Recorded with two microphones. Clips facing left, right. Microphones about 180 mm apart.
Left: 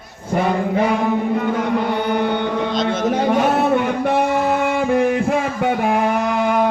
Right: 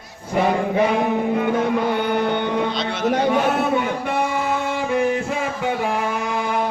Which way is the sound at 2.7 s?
45° left (ahead or behind).